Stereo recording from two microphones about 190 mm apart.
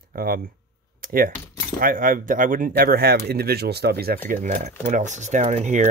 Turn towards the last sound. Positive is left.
turn(degrees=-40)  # may be behind; listen again after turning